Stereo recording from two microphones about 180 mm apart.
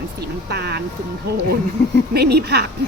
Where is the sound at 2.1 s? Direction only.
65° right (ahead or behind).